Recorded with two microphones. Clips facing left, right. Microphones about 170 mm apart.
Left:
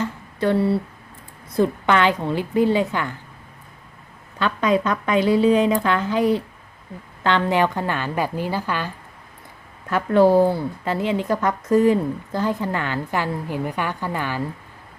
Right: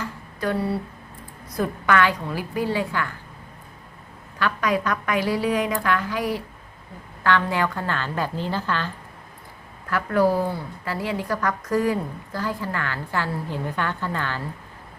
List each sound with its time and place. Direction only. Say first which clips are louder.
0.0 s a sound: left 5 dB; 25° left (ahead or behind)
1.5 s speech: left 4 dB; 25° left (ahead or behind)
4.4 s a woman's voice: left 4 dB; 25° left (ahead or behind)
9.9 s speech: left 5 dB; 25° left (ahead or behind)